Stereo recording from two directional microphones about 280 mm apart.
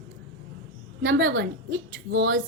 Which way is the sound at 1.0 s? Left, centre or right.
Right.